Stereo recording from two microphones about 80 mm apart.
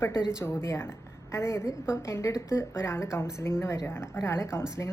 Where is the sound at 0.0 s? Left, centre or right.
Left.